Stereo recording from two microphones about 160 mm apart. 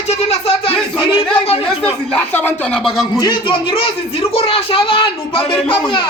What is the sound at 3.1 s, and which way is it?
Speech, 30° left (ahead or behind).